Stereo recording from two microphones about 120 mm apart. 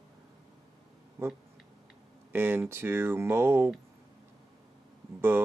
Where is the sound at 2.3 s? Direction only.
20° right (ahead or behind).